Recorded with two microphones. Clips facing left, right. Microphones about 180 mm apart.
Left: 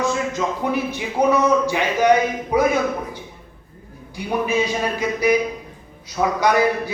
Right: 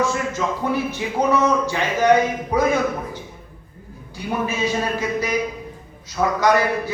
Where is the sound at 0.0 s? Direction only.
15° left (ahead or behind).